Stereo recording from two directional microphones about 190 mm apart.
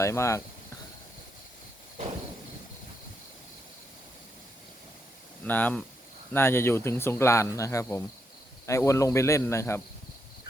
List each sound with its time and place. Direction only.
0.0 s speech: 15° left (ahead or behind)
5.5 s speech: 10° left (ahead or behind)